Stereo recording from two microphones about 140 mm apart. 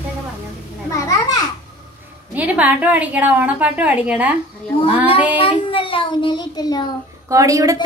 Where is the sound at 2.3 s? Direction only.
10° right (ahead or behind).